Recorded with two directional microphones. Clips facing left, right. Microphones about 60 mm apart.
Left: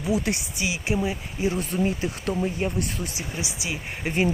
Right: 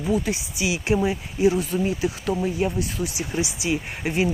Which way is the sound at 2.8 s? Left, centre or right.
Left.